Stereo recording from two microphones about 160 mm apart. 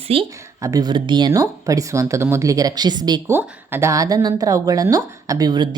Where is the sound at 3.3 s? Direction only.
15° right (ahead or behind).